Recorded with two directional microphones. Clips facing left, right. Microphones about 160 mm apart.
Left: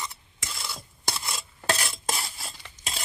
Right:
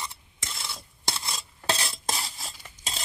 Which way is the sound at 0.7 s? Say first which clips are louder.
Left 1 dB; 25° right (ahead or behind).